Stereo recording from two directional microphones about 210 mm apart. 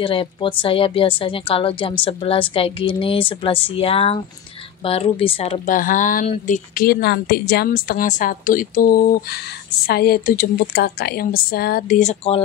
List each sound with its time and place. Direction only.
0.0 s a woman's voice: 25° left (ahead or behind)